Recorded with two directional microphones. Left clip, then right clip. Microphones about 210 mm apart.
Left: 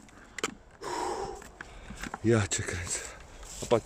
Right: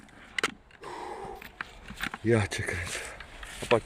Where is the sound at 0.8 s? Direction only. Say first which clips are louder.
Left 6 dB; 10° left (ahead or behind).